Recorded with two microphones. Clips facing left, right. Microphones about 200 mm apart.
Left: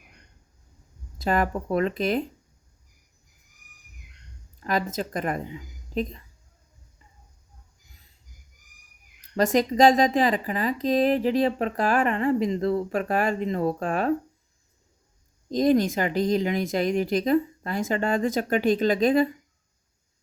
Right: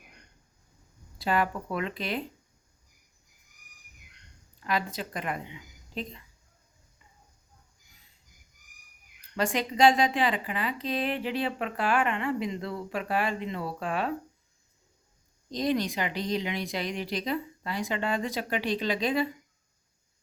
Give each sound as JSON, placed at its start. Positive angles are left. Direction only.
{"t": 1.2, "sound": "speech", "side_deg": 45}
{"t": 4.6, "sound": "speech", "side_deg": 45}
{"t": 9.3, "sound": "speech", "side_deg": 40}
{"t": 15.4, "sound": "speech", "side_deg": 45}